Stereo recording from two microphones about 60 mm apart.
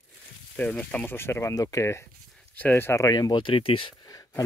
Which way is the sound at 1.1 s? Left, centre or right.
Left.